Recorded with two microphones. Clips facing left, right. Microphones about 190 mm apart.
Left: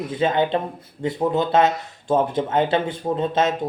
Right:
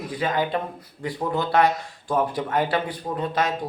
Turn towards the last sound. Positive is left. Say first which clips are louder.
# left 4 dB
turn(degrees=25)  # may be behind; listen again after turning